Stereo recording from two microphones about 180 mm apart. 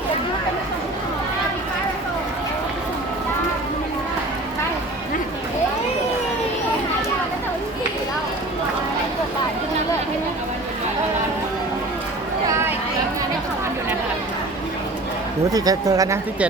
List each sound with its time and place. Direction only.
15.4 s speech: 20° right (ahead or behind)